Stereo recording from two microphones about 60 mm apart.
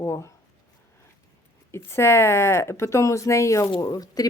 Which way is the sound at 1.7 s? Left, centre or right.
Left.